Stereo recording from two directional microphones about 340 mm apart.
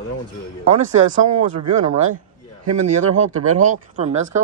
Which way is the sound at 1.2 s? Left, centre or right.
Right.